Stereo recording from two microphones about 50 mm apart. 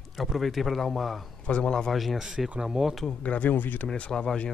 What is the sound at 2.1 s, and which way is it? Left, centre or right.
Speech, centre.